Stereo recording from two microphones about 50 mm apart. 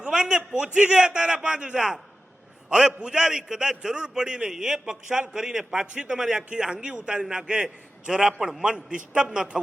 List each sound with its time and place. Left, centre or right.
0.0 s a man's voice: centre